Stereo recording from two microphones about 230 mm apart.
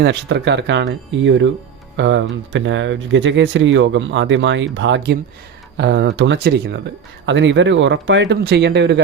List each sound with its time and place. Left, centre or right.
0.0 s speech: right